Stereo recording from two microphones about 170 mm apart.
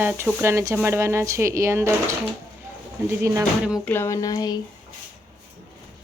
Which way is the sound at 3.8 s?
15° left (ahead or behind).